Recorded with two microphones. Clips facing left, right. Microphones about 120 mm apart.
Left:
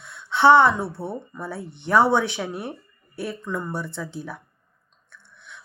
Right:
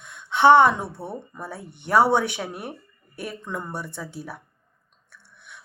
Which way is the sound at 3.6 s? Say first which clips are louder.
Left 3 dB; 15° right (ahead or behind).